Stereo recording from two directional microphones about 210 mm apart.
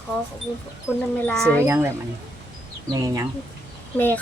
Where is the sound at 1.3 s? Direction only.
5° left (ahead or behind).